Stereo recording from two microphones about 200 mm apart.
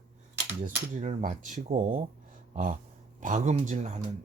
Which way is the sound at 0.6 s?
40° right (ahead or behind).